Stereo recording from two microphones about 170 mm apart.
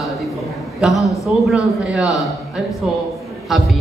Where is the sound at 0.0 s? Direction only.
Centre (ahead or behind).